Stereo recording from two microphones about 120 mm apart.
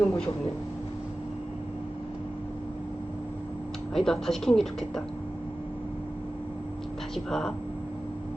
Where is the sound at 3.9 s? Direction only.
5° left (ahead or behind).